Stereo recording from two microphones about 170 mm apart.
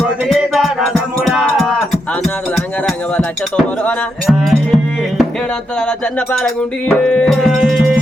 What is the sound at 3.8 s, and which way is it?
Music, 5° left (ahead or behind).